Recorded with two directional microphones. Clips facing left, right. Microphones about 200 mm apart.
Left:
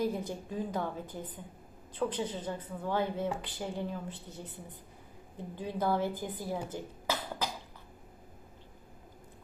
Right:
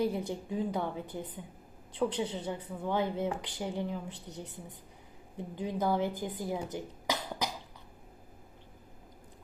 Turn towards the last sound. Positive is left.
turn(degrees=-15)  # may be behind; listen again after turning